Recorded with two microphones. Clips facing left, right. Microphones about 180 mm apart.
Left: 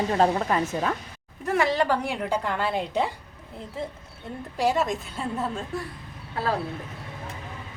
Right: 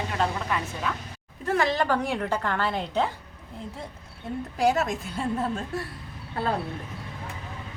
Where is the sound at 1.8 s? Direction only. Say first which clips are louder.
Even; 10° left (ahead or behind).